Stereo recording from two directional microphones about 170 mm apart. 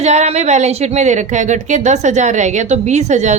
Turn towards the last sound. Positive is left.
turn(degrees=-45)  # may be behind; listen again after turning